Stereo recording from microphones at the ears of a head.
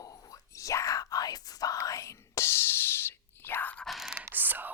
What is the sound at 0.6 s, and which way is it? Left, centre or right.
Whispering, left.